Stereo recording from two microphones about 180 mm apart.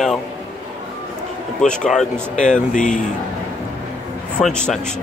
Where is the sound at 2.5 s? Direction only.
45° left (ahead or behind).